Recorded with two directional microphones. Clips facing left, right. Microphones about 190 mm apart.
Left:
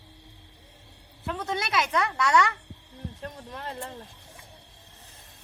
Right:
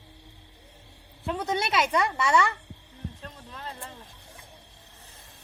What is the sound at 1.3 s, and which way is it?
A woman's voice, 20° right (ahead or behind).